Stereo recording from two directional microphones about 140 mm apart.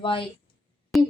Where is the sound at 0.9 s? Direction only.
Centre (ahead or behind).